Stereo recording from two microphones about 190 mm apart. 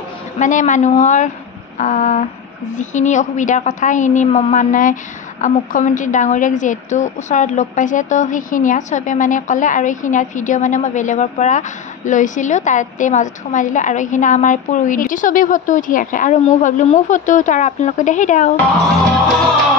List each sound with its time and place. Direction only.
0.4 s a woman's voice: 40° left (ahead or behind)